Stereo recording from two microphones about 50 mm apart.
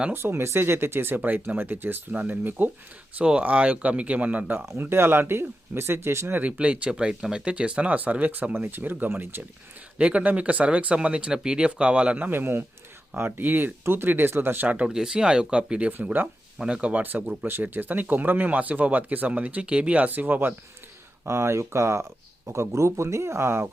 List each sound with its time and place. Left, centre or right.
0.1 s speech: right
3.4 s speech: right
4.8 s speech: right
6.6 s speech: right
10.0 s speech: right
12.1 s speech: right
14.8 s speech: centre
16.8 s speech: right
21.2 s speech: right